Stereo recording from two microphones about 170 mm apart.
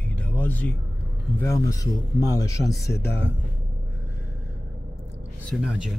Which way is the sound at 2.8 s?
75° left (ahead or behind).